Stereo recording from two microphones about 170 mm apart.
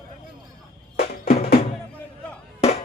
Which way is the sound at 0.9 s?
65° left (ahead or behind).